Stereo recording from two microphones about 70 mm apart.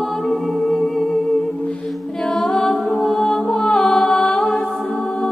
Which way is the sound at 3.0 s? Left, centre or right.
Centre.